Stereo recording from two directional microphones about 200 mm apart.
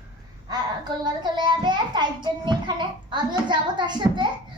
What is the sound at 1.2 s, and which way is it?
A child's voice, 20° right (ahead or behind).